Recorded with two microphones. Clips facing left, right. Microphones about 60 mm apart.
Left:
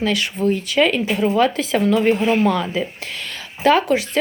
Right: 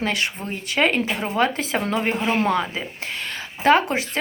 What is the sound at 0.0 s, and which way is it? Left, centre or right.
Speech, right.